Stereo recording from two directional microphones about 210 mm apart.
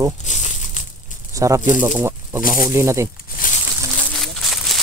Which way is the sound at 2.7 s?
15° right (ahead or behind).